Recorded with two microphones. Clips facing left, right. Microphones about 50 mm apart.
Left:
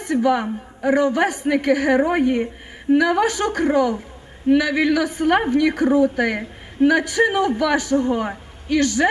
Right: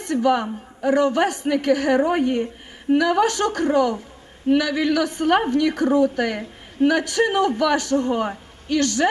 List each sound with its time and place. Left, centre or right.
0.0 s a woman's voice: centre